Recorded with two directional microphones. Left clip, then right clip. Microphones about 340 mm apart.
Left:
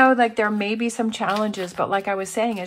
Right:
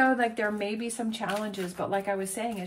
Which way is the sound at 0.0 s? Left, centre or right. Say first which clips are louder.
Left 8 dB; centre.